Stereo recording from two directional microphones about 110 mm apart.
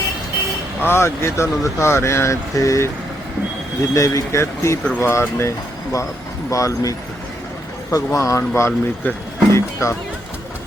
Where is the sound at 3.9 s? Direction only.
30° left (ahead or behind).